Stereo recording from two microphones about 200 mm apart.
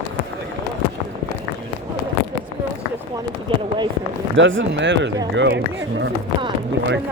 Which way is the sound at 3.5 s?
25° right (ahead or behind).